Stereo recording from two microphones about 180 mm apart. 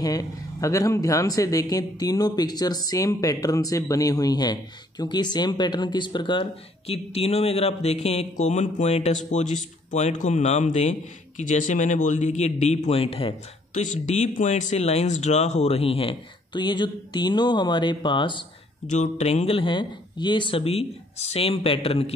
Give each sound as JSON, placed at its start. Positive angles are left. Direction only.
{"t": 0.0, "sound": "speech", "side_deg": 20}
{"t": 18.9, "sound": "speech", "side_deg": 40}